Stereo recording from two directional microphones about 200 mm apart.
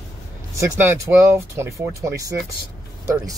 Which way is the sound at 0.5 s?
10° right (ahead or behind).